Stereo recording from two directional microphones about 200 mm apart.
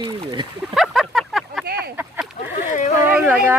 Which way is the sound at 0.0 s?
20° right (ahead or behind).